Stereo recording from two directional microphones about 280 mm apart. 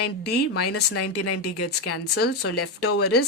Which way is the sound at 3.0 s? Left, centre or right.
Left.